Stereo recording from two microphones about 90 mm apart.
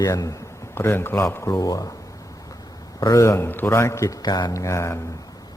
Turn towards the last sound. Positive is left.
turn(degrees=30)  # may be behind; listen again after turning